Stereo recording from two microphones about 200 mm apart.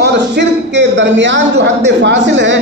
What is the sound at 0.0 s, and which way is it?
A man's voice, 60° right (ahead or behind).